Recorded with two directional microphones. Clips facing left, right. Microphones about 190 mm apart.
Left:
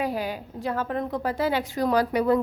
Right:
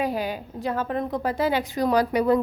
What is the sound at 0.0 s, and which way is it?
A woman's voice, 20° right (ahead or behind).